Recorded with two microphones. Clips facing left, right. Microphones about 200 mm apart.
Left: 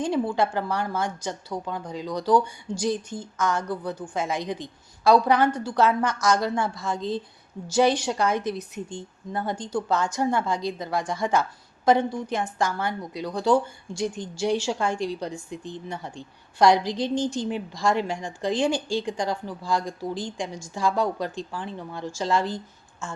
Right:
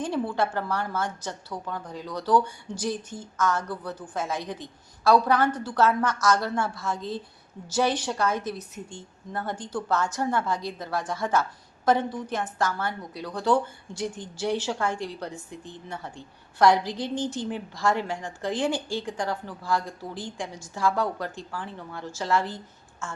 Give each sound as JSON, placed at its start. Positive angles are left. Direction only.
{"t": 0.0, "sound": "a woman's voice", "side_deg": 15}